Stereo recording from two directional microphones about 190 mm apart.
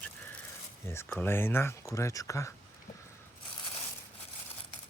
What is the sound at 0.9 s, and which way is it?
Speech, 10° left (ahead or behind).